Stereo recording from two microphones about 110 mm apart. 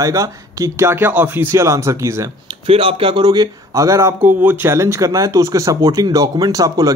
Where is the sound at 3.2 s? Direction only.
35° right (ahead or behind).